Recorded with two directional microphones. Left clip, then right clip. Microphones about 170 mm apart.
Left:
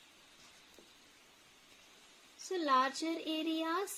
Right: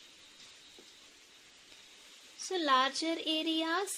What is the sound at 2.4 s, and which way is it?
A child's voice, 20° right (ahead or behind).